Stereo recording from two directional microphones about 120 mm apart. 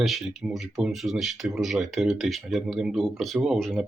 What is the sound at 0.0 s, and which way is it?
Speech, centre (ahead or behind).